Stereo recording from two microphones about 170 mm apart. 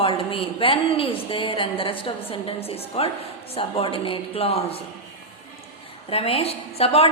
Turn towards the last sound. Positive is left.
turn(degrees=35)  # may be behind; listen again after turning